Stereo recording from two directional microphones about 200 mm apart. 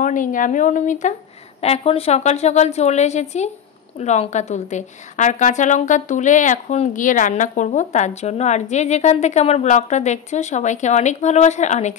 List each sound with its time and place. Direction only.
0.0 s a woman's voice: 40° left (ahead or behind)